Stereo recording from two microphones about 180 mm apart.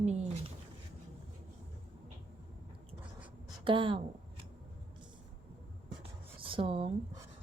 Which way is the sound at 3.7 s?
30° right (ahead or behind).